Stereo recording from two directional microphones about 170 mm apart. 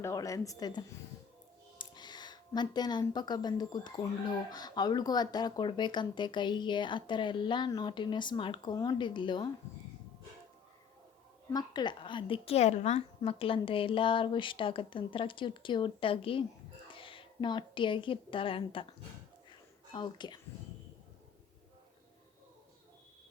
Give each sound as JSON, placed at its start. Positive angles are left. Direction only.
{"t": 0.0, "sound": "speech", "side_deg": 20}
{"t": 11.5, "sound": "a woman's voice", "side_deg": 25}
{"t": 19.9, "sound": "speech", "side_deg": 25}